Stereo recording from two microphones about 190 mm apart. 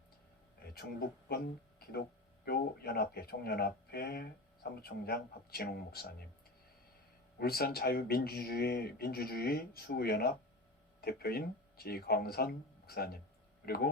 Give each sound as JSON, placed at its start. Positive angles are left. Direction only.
{"t": 0.7, "sound": "speech", "side_deg": 55}
{"t": 7.3, "sound": "speech", "side_deg": 55}